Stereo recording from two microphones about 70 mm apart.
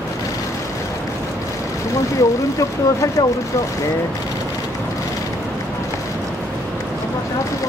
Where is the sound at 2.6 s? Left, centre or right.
Left.